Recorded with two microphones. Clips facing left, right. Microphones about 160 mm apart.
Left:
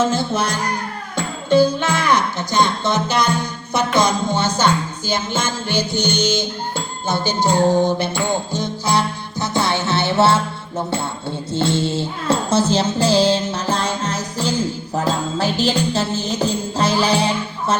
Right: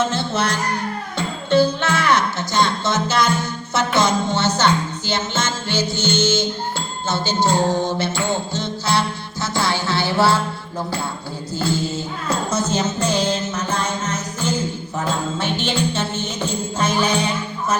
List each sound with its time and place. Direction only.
0.1 s music: 10° left (ahead or behind)
11.5 s music: 25° left (ahead or behind)